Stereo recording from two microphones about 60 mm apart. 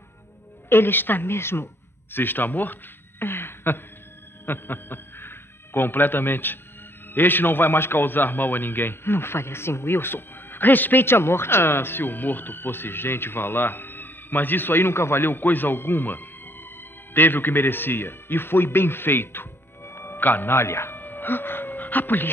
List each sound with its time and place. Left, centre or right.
0.7 s a man's voice: left